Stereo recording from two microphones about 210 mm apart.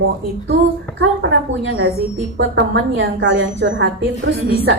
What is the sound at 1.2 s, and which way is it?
A woman's voice, 55° right (ahead or behind).